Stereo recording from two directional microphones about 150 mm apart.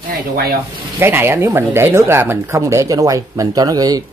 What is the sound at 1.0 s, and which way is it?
Speech, 15° right (ahead or behind).